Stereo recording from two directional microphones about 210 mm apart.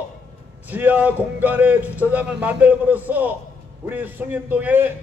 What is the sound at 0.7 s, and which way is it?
A man's voice, 10° right (ahead or behind).